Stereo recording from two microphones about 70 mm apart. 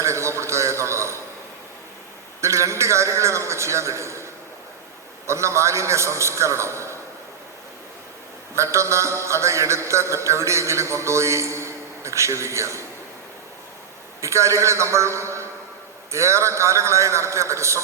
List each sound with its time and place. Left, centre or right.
0.0 s a sound: right
2.4 s a man's voice: right
8.5 s a man's voice: right
14.2 s a man's voice: right